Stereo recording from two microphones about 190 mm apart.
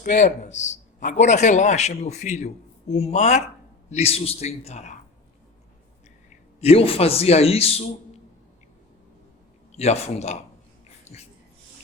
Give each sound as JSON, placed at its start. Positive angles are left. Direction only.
{"t": 0.0, "sound": "a man's voice", "side_deg": 40}
{"t": 6.6, "sound": "a man's voice", "side_deg": 30}
{"t": 9.7, "sound": "a man's voice", "side_deg": 35}